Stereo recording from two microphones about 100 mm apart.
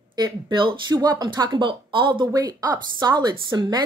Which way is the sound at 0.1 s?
45° right (ahead or behind).